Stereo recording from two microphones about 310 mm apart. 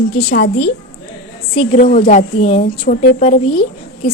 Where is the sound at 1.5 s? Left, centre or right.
Left.